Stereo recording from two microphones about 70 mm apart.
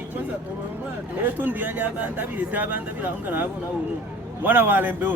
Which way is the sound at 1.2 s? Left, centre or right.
Right.